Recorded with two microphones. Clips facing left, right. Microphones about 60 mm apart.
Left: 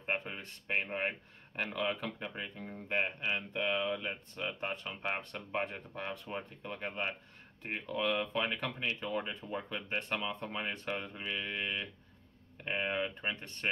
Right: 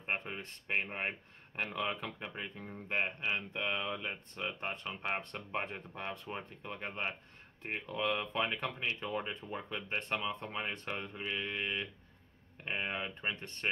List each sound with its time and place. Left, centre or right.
0.3 s speech: centre